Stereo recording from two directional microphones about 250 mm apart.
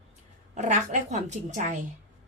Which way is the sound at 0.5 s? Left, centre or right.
Right.